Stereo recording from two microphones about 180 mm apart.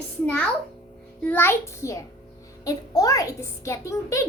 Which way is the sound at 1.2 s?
10° left (ahead or behind).